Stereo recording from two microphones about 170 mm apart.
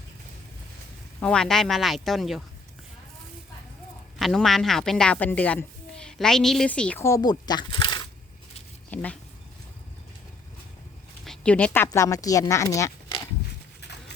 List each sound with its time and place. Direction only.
1.2 s speech: 5° left (ahead or behind)
4.2 s speech: centre (ahead or behind); by 8.0 s 30° left (ahead or behind)
8.9 s speech: 10° left (ahead or behind)
11.3 s speech: 5° left (ahead or behind)